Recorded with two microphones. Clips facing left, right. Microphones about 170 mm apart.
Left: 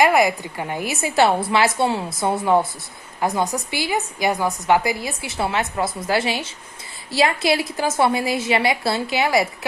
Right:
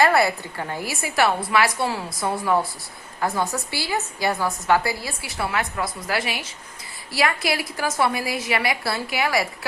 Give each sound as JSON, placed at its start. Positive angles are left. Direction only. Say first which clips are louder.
{"t": 0.0, "sound": "a woman's voice", "louder": "left 2 dB", "side_deg": 15}